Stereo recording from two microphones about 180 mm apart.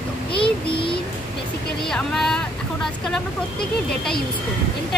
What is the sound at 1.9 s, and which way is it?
Speech, 5° left (ahead or behind).